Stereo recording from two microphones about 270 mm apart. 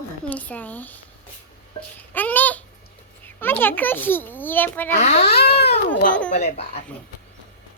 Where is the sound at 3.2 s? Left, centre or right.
Centre.